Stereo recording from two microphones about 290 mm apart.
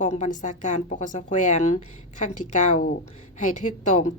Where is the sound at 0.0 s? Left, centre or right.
Left.